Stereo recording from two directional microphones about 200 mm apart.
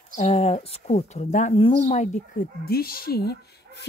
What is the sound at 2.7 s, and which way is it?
Speech, 50° left (ahead or behind).